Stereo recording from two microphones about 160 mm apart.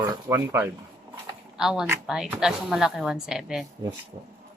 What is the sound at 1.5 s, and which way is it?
Speech, 5° right (ahead or behind).